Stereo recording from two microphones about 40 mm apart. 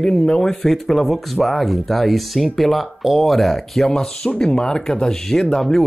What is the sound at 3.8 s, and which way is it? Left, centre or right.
Speech, centre.